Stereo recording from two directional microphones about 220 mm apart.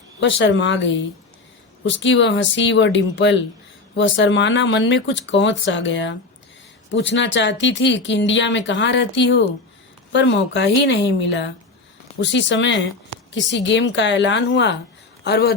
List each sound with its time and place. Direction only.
0.2 s a woman's voice: 55° left (ahead or behind)